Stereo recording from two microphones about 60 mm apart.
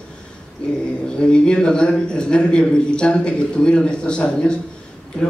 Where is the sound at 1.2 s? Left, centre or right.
Centre.